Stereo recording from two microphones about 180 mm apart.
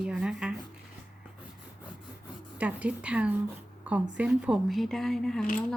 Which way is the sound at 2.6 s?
5° right (ahead or behind).